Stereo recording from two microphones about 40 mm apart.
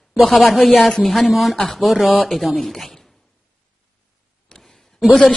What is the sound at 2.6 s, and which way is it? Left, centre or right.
Speech, centre.